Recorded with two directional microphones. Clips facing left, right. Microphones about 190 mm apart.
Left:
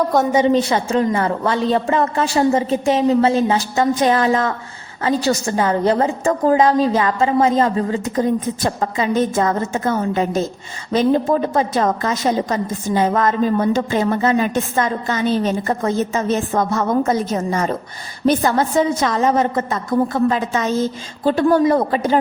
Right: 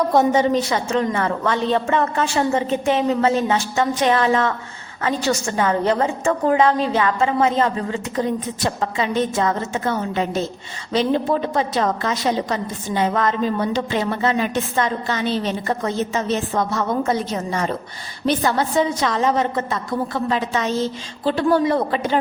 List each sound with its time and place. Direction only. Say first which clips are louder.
0.1 s a woman's voice: right 1 dB; centre (ahead or behind)
0.5 s a woman's voice: left 3 dB; 30° left (ahead or behind)